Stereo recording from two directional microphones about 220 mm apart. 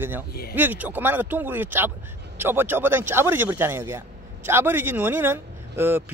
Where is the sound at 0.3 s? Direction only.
45° left (ahead or behind).